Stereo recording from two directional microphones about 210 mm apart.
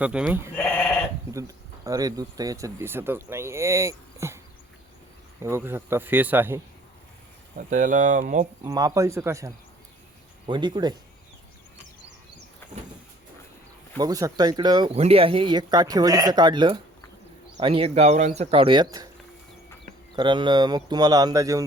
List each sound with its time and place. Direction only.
0.0 s speech: 5° right (ahead or behind)
0.5 s sheep: 10° left (ahead or behind)
1.3 s speech: 15° right (ahead or behind)
5.4 s speech: 10° right (ahead or behind)
7.7 s speech: 35° right (ahead or behind)
8.6 s speech: 20° right (ahead or behind)
14.0 s speech: 15° right (ahead or behind)
20.1 s speech: 20° right (ahead or behind)